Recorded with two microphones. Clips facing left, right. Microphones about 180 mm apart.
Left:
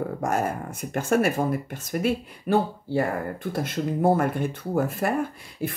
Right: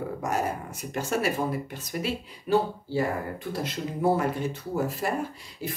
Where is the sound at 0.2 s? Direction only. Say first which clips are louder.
Left 2 dB; 50° left (ahead or behind).